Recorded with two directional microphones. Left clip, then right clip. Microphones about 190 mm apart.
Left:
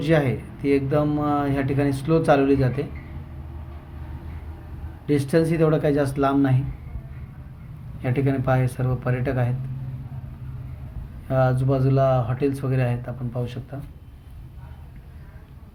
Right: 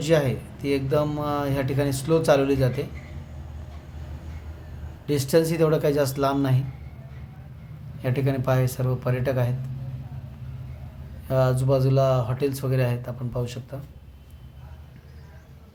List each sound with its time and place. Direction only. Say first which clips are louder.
0.0 s speech: even; 5° right (ahead or behind)
5.0 s speech: even; 10° right (ahead or behind)
8.0 s speech: left 2 dB; 10° right (ahead or behind)
11.3 s speech: even; 10° right (ahead or behind)